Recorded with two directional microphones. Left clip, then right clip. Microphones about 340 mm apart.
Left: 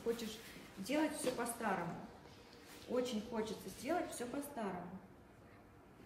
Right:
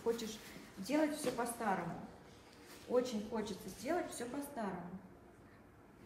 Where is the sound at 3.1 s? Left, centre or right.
Centre.